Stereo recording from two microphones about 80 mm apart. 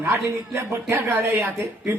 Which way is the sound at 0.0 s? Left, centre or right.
Right.